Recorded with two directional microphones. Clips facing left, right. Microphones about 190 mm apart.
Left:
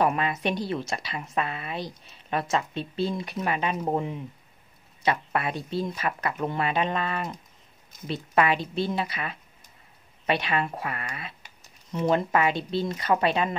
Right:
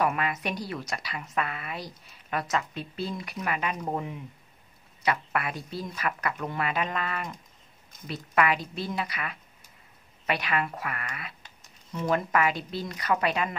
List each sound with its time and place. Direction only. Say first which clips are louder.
0.0 s a woman's voice: left 3 dB; 30° left (ahead or behind)